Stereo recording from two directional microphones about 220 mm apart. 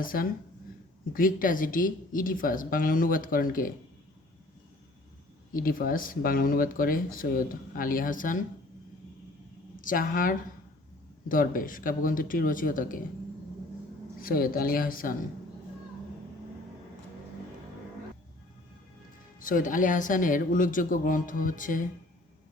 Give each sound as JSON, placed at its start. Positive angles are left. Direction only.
{"t": 0.0, "sound": "speech", "side_deg": 40}
{"t": 5.5, "sound": "speech", "side_deg": 40}
{"t": 9.7, "sound": "a woman's voice", "side_deg": 40}
{"t": 14.2, "sound": "speech", "side_deg": 40}
{"t": 19.4, "sound": "speech", "side_deg": 35}